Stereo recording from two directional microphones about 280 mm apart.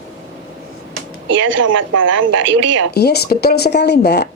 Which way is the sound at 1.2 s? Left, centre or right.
Right.